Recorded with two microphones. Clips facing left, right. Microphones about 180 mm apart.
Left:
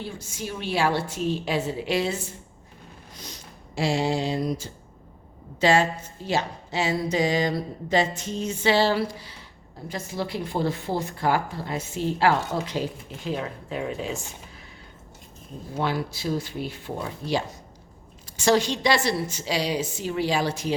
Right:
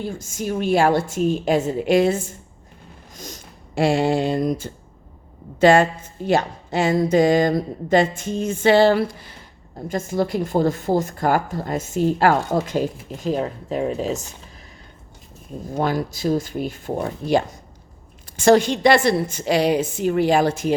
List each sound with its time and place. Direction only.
0.0 s a woman's voice: 45° right (ahead or behind)
15.7 s a woman's voice: 45° right (ahead or behind)